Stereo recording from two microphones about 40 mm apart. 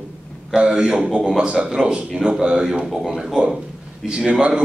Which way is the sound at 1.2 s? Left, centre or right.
Centre.